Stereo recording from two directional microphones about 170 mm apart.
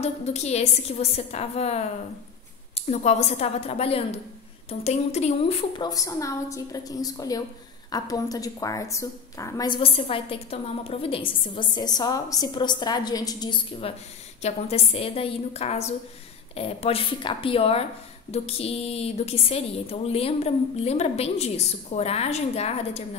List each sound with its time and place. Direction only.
0.0 s a woman's voice: 40° left (ahead or behind)
5.9 s a woman's voice: 20° left (ahead or behind); by 23.0 s 40° left (ahead or behind)